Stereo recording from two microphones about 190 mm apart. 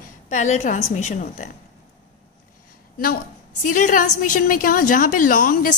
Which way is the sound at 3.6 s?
45° left (ahead or behind).